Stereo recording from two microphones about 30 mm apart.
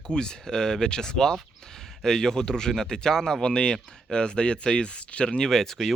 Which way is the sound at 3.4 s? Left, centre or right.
Left.